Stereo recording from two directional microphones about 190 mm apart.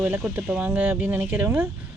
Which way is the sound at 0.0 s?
10° right (ahead or behind).